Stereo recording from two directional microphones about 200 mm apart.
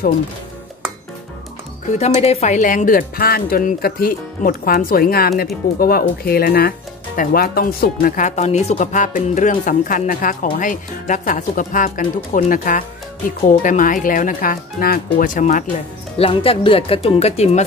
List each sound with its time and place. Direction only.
1.9 s a woman's voice: 35° left (ahead or behind)
16.2 s speech: 25° left (ahead or behind)